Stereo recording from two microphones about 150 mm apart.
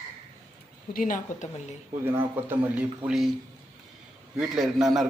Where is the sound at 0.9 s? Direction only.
60° left (ahead or behind).